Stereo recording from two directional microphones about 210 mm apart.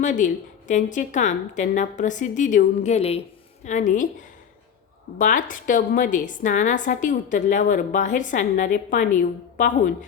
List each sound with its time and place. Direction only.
0.0 s a woman's voice: 35° left (ahead or behind)
5.1 s a woman's voice: 40° left (ahead or behind)